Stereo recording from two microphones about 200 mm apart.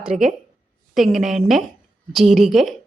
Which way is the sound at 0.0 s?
5° right (ahead or behind).